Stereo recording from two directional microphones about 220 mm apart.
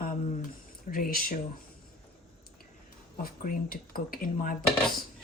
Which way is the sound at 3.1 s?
40° left (ahead or behind).